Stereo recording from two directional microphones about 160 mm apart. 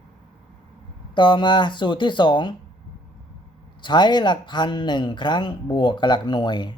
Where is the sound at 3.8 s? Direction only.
30° left (ahead or behind).